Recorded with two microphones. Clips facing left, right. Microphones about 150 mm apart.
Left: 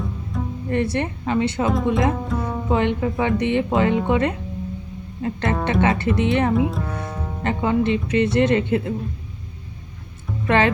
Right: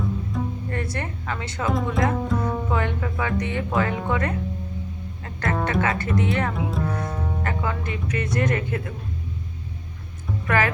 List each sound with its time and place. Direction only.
0.3 s music: centre (ahead or behind)
0.7 s a woman's voice: 20° left (ahead or behind)
2.2 s music: centre (ahead or behind)
2.6 s speech: 20° left (ahead or behind)
6.7 s music: centre (ahead or behind)
7.4 s speech: 25° left (ahead or behind)
10.4 s speech: 25° left (ahead or behind)